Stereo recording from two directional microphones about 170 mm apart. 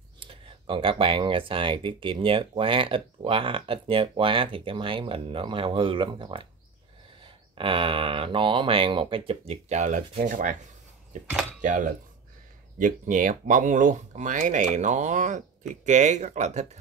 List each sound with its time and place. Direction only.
0.2 s speech: 30° right (ahead or behind)